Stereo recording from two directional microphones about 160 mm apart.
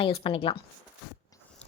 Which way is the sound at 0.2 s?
35° left (ahead or behind).